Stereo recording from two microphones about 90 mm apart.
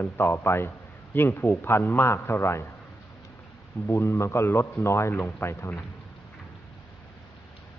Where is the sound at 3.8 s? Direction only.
25° left (ahead or behind).